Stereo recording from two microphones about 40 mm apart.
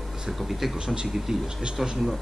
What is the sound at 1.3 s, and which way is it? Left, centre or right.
Speech, centre.